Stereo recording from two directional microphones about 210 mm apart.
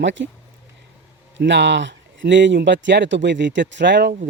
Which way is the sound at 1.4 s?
55° right (ahead or behind).